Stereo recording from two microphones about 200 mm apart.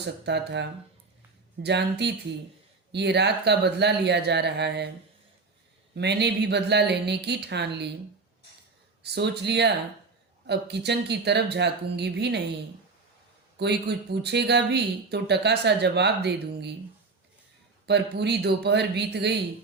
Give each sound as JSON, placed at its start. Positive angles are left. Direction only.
{"t": 0.0, "sound": "speech", "side_deg": -60}
{"t": 5.9, "sound": "speech", "side_deg": -55}
{"t": 9.1, "sound": "speech", "side_deg": -55}
{"t": 13.6, "sound": "speech", "side_deg": -55}
{"t": 17.8, "sound": "speech", "side_deg": -55}